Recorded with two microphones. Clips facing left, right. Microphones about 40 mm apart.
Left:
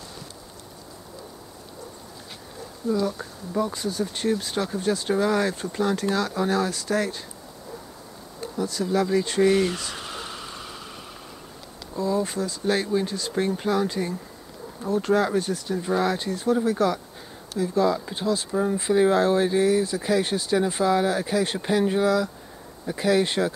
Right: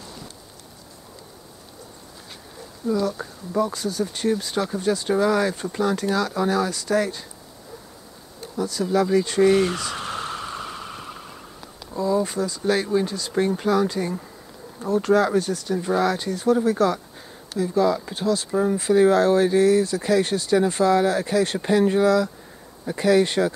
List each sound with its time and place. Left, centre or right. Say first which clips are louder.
2.9 s speech: right 2 dB; centre
8.5 s speech: right 2 dB; centre
9.9 s a sound: right 6 dB; right
11.9 s speech: right 3 dB; centre
18.8 s speech: right 3 dB; centre